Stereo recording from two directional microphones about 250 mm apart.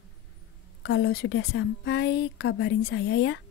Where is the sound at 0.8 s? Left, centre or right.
Left.